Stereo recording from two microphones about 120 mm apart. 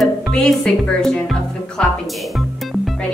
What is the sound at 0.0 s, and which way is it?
Speech, 5° left (ahead or behind).